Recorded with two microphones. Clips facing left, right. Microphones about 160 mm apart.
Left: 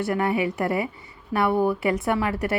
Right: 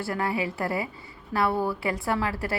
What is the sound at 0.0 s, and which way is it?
A woman's voice, 25° left (ahead or behind).